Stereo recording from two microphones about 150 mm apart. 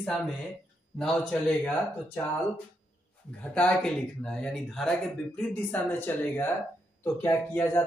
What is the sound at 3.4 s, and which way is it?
Speech, 10° left (ahead or behind).